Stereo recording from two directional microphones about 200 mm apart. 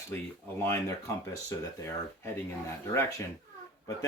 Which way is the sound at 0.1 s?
10° left (ahead or behind).